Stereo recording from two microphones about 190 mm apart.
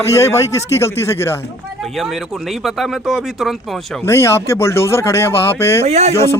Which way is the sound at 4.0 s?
15° left (ahead or behind).